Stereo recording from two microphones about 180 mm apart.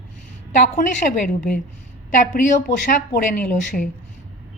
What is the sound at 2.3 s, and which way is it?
Speech, 45° left (ahead or behind).